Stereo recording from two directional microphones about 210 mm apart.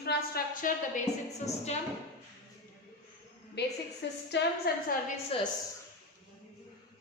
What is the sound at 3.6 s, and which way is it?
A woman's voice, 50° left (ahead or behind).